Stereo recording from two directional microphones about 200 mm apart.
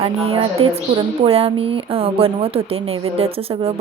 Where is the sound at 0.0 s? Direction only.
30° right (ahead or behind).